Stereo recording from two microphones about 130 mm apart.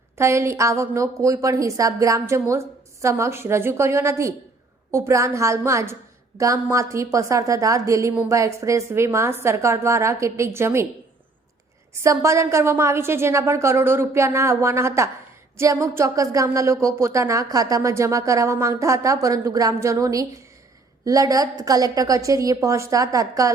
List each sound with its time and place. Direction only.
0.2 s a woman's voice: 20° right (ahead or behind)
11.9 s a woman's voice: 25° right (ahead or behind)